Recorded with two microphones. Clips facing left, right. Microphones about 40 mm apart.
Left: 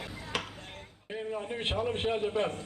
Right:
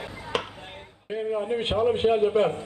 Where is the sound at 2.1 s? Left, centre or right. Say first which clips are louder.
Right 9 dB; right.